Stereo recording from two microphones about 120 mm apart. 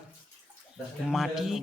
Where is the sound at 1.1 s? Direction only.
Centre (ahead or behind).